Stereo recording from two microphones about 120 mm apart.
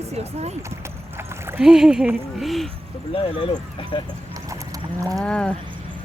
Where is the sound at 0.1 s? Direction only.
65° right (ahead or behind).